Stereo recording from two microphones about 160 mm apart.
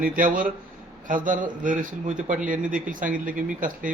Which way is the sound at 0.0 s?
60° right (ahead or behind).